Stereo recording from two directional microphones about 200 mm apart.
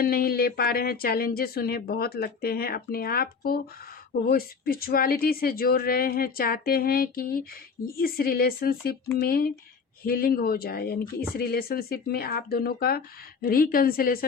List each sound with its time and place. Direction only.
0.0 s speech: 50° left (ahead or behind)